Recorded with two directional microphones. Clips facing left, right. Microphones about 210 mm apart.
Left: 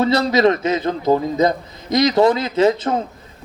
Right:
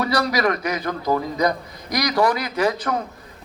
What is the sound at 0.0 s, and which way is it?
A man's voice, 25° left (ahead or behind).